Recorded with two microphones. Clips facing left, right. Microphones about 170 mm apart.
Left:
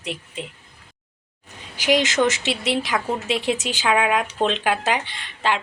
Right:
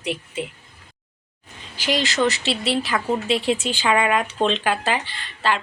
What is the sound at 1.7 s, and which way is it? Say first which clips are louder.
Speech: left 3 dB; 15° left (ahead or behind).